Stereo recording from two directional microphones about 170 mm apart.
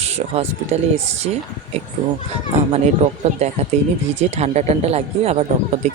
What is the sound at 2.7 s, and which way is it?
Speech, 40° right (ahead or behind).